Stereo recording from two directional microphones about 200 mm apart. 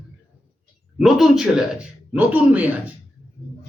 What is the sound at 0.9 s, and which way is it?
Speech, centre (ahead or behind).